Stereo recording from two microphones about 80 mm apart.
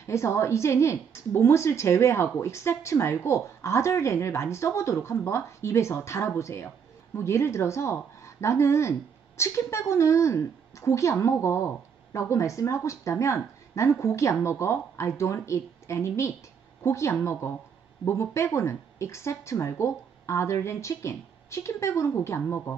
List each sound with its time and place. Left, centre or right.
0.0 s a woman's voice: left